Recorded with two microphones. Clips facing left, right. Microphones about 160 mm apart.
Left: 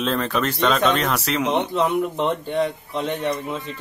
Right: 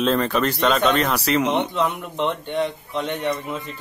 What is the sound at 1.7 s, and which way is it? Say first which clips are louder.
Speech: left 3 dB; 35° left (ahead or behind).